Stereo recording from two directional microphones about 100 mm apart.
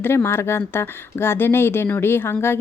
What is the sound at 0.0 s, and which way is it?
A woman's voice, 25° left (ahead or behind).